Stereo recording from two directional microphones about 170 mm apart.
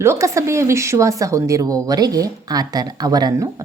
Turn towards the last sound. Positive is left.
turn(degrees=-20)  # may be behind; listen again after turning